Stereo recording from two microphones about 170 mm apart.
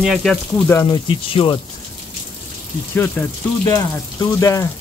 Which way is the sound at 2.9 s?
10° left (ahead or behind).